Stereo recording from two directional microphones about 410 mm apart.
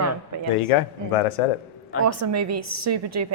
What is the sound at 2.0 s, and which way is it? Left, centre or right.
A woman's voice, right.